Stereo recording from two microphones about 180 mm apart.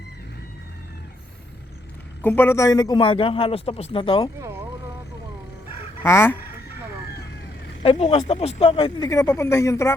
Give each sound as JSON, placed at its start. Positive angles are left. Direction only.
{"t": 2.2, "sound": "speech", "side_deg": 10}
{"t": 4.4, "sound": "vehicle", "side_deg": -15}
{"t": 6.0, "sound": "fowl", "side_deg": 15}
{"t": 7.8, "sound": "speech", "side_deg": 35}